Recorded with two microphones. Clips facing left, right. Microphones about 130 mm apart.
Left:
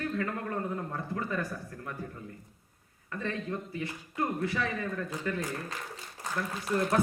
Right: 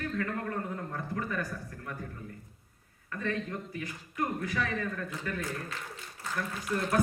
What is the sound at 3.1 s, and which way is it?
A man's voice, 25° left (ahead or behind).